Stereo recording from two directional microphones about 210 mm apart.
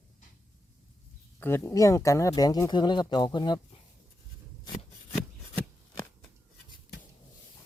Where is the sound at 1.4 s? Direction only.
10° left (ahead or behind).